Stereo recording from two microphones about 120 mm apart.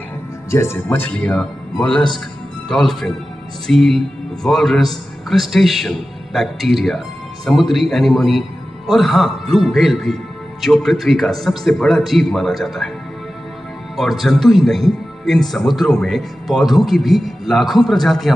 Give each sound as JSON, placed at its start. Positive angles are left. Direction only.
{"t": 0.5, "sound": "speech", "side_deg": 20}
{"t": 13.9, "sound": "speech", "side_deg": 0}